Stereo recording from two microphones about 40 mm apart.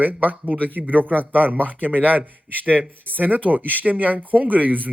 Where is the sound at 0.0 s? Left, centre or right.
Right.